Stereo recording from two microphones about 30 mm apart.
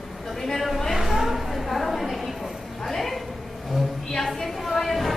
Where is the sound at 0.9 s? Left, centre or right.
Centre.